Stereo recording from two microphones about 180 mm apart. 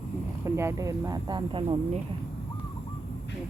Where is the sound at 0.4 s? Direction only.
15° right (ahead or behind); by 2.0 s 30° right (ahead or behind).